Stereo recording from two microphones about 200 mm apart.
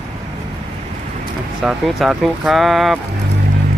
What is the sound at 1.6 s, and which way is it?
Speech, centre (ahead or behind).